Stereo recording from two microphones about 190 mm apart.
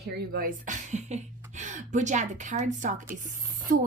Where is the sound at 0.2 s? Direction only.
50° right (ahead or behind).